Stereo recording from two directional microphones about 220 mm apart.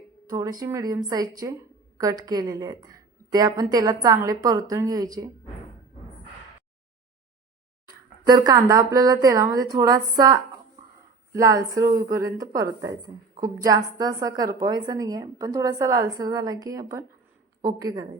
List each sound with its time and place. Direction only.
0.3 s a woman's voice: 15° right (ahead or behind)
8.3 s a woman's voice: 15° right (ahead or behind)